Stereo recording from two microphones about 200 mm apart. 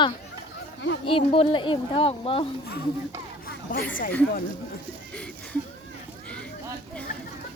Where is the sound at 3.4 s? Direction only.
45° left (ahead or behind).